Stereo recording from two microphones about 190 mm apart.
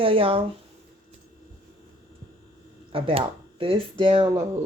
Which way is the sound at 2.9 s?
30° right (ahead or behind).